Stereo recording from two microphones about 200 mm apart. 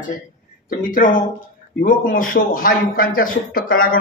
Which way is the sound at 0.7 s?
40° left (ahead or behind).